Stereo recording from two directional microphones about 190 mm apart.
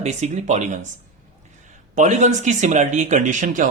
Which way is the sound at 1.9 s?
40° right (ahead or behind).